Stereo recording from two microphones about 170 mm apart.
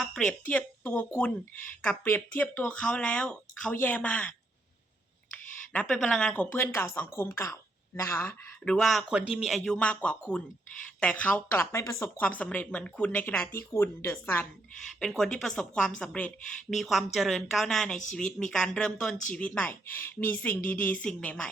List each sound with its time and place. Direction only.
0.0 s a woman's voice: 5° left (ahead or behind)
14.9 s a woman's voice: centre (ahead or behind)
17.9 s speech: 45° left (ahead or behind)
18.2 s a woman's voice: 5° left (ahead or behind)